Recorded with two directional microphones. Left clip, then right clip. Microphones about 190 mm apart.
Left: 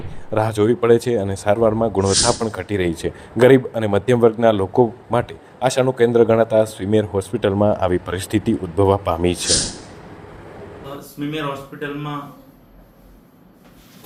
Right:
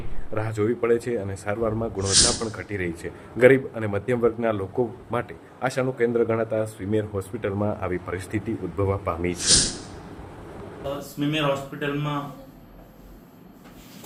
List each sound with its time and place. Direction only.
0.3 s speech: 30° left (ahead or behind)
2.0 s speech: centre (ahead or behind)
2.6 s speech: 35° left (ahead or behind)
9.3 s a man's voice: centre (ahead or behind)
11.2 s speech: centre (ahead or behind)